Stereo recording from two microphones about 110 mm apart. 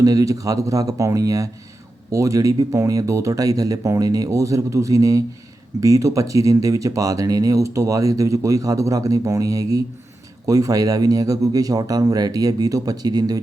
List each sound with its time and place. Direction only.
0.0 s speech: 30° right (ahead or behind)